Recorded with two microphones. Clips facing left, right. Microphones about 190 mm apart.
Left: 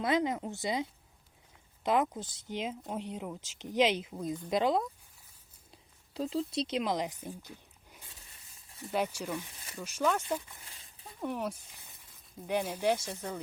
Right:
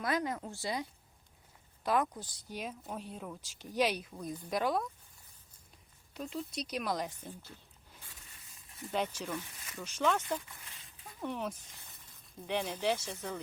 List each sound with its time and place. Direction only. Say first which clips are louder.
0.0 s a woman's voice: left 4 dB; 20° left (ahead or behind)
6.1 s a woman's voice: left 7 dB; 30° left (ahead or behind); by 7.6 s 10° left (ahead or behind)
8.9 s speech: left 2 dB; 10° left (ahead or behind)
10.7 s a sound: left 1 dB; 35° left (ahead or behind)
11.2 s speech: left 3 dB; 10° left (ahead or behind)